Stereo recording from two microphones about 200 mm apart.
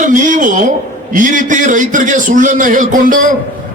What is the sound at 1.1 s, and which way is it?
A man's voice, 40° right (ahead or behind).